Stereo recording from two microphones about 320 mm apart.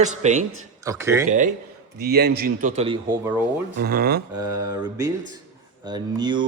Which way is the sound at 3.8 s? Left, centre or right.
Right.